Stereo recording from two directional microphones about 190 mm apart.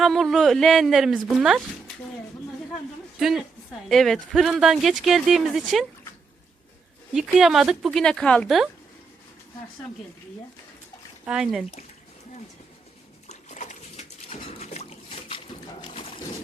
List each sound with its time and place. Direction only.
0.0 s speech: centre (ahead or behind)
3.2 s a woman's voice: centre (ahead or behind)
7.1 s speech: centre (ahead or behind)
11.3 s speech: 5° right (ahead or behind)
13.2 s a sound: 40° left (ahead or behind)